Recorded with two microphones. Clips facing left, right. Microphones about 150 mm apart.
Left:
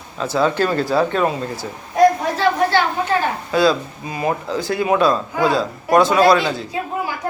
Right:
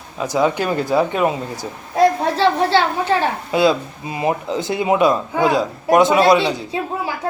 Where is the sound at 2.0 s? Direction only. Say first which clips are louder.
Even; 30° right (ahead or behind).